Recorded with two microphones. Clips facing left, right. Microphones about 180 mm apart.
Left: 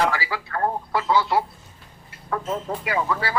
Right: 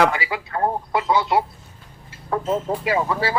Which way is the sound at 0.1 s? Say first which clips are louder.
Right 2 dB; 20° right (ahead or behind).